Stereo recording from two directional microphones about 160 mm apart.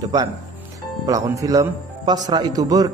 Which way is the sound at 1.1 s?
20° right (ahead or behind).